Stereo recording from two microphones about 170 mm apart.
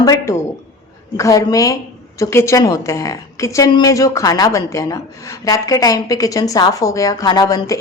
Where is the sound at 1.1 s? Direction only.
20° left (ahead or behind).